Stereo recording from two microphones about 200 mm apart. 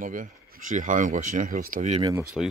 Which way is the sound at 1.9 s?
25° right (ahead or behind).